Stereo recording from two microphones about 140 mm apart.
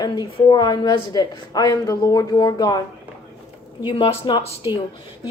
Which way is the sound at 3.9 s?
35° left (ahead or behind).